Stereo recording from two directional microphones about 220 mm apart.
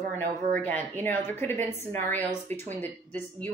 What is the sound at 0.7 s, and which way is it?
A woman's voice, 10° left (ahead or behind).